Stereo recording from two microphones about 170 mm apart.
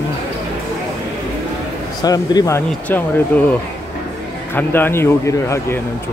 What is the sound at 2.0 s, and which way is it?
A man's voice, 20° left (ahead or behind).